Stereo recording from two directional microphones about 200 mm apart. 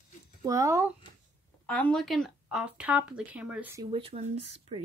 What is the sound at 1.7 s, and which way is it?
Speech, 5° left (ahead or behind).